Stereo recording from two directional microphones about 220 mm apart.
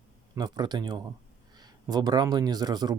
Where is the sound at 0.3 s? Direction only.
20° right (ahead or behind).